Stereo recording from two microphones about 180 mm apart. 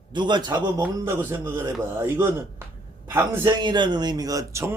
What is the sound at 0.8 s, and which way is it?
Speech, 10° right (ahead or behind).